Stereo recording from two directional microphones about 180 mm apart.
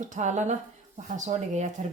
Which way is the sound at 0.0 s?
40° right (ahead or behind).